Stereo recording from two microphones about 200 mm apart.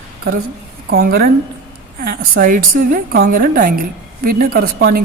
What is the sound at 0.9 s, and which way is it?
A woman's voice, 50° right (ahead or behind).